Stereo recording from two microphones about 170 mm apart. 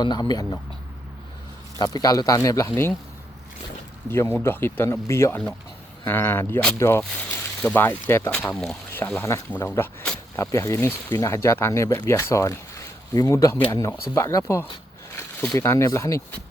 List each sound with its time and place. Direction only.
0.0 s speech: 25° left (ahead or behind)
1.8 s speech: 20° left (ahead or behind)
4.1 s speech: 15° left (ahead or behind)